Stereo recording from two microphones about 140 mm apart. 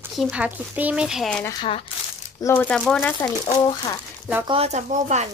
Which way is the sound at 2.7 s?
5° left (ahead or behind).